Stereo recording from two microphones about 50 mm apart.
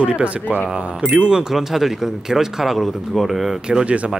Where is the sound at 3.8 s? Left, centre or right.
Right.